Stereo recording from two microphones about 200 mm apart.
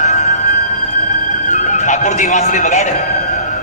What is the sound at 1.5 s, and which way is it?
Music, 40° left (ahead or behind).